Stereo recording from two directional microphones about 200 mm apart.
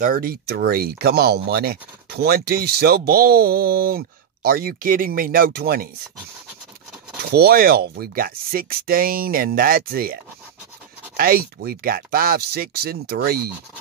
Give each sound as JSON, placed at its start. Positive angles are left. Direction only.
{"t": 0.0, "sound": "speech", "side_deg": -45}
{"t": 7.2, "sound": "speech", "side_deg": -50}
{"t": 11.1, "sound": "speech", "side_deg": -45}